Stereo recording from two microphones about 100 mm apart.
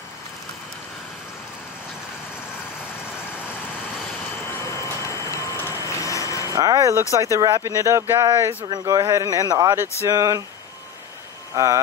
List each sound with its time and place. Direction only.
4.6 s vehicle: 30° left (ahead or behind)
6.5 s speech: 35° right (ahead or behind)
11.5 s speech: 35° right (ahead or behind)